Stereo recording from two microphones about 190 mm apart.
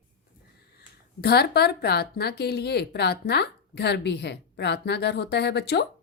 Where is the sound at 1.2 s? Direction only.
55° left (ahead or behind).